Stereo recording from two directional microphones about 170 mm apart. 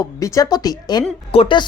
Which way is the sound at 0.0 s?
20° left (ahead or behind).